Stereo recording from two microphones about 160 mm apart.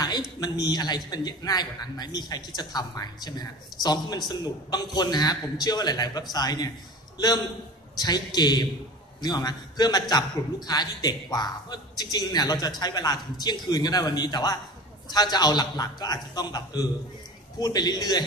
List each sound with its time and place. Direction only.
0.4 s a man's voice: 25° left (ahead or behind)